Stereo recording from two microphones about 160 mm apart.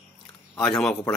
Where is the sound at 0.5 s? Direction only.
5° left (ahead or behind).